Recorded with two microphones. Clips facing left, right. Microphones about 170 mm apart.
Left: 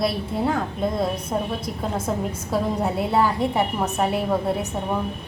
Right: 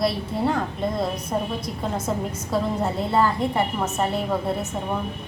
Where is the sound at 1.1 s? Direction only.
30° left (ahead or behind).